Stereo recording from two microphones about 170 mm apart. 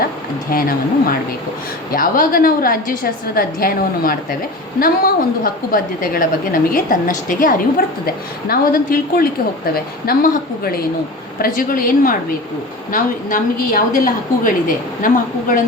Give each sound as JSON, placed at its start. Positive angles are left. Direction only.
{"t": 0.5, "sound": "a woman's voice", "side_deg": 55}
{"t": 1.9, "sound": "a woman's voice", "side_deg": 55}